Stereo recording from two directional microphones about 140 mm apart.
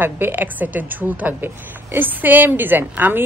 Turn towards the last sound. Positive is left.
turn(degrees=-15)  # may be behind; listen again after turning